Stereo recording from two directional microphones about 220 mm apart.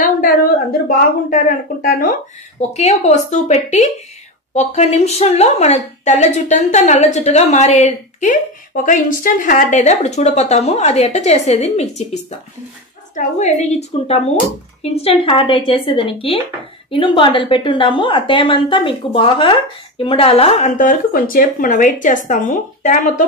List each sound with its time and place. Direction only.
0.0 s a woman's voice: 40° left (ahead or behind)